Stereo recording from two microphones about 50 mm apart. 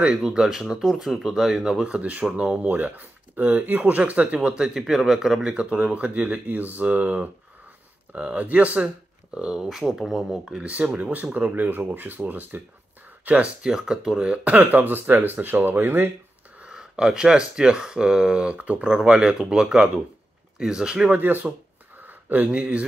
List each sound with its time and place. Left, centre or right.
0.0 s speech: centre
1.9 s speech: right
8.8 s speech: centre
10.6 s speech: right
13.6 s speech: centre
14.5 s speech: right
16.6 s speech: centre
21.1 s a sound: right
22.5 s speech: right